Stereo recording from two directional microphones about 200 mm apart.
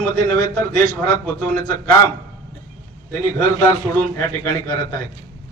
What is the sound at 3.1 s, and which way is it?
A man's voice, 15° left (ahead or behind).